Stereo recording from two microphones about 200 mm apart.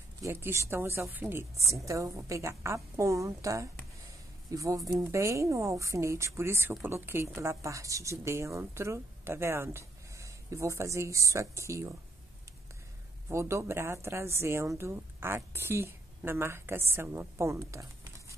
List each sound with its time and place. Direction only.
0.2 s speech: 10° right (ahead or behind)
13.3 s speech: 15° right (ahead or behind)